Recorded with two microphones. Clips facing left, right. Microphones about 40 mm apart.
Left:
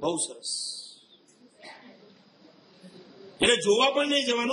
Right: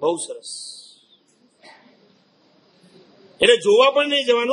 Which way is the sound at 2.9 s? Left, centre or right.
Right.